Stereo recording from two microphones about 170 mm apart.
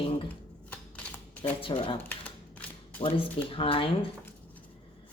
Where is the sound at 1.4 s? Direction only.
30° left (ahead or behind).